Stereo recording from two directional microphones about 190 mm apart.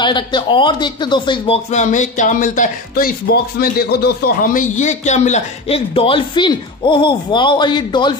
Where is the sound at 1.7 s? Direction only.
40° left (ahead or behind).